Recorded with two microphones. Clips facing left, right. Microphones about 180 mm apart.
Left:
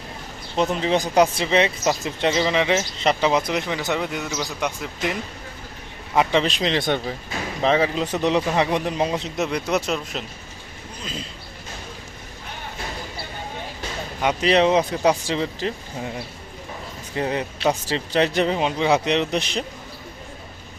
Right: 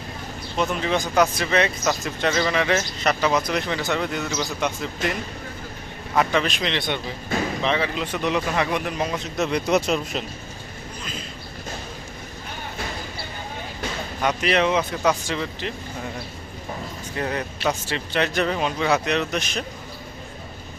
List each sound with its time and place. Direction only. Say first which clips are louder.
0.5 s speech: left 3 dB; 30° left (ahead or behind); by 5.1 s 10° left (ahead or behind)
6.1 s speech: left 2 dB; 25° left (ahead or behind)
9.4 s speech: right 3 dB; 5° left (ahead or behind)
14.4 s speech: left 4 dB; 30° left (ahead or behind)
17.2 s speech: left 3 dB; 25° left (ahead or behind)